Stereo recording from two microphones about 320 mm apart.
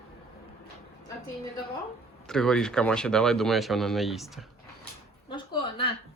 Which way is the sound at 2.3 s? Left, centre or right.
Centre.